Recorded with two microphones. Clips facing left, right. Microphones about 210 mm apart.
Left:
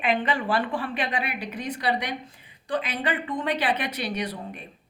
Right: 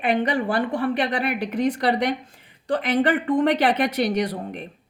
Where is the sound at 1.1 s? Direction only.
50° right (ahead or behind).